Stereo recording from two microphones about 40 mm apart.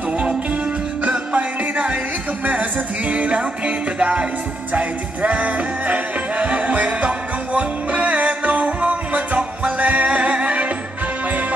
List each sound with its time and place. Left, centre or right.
1.0 s music: right
3.1 s music: right